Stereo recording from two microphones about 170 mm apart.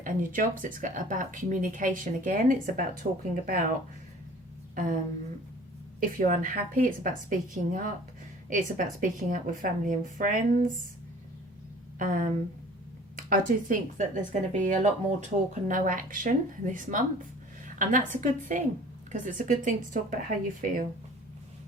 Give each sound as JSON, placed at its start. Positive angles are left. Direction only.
{"t": 0.0, "sound": "speech", "side_deg": -55}
{"t": 4.7, "sound": "speech", "side_deg": -50}
{"t": 6.0, "sound": "speech", "side_deg": -50}
{"t": 11.9, "sound": "speech", "side_deg": -50}